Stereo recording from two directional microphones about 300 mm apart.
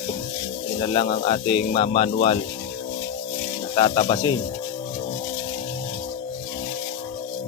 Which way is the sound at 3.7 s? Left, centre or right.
Centre.